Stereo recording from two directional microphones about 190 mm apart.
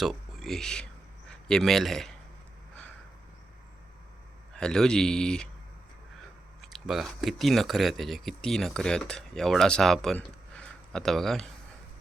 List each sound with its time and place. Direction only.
0.0 s a man's voice: centre (ahead or behind)
4.5 s speech: 5° left (ahead or behind)
6.7 s speech: centre (ahead or behind)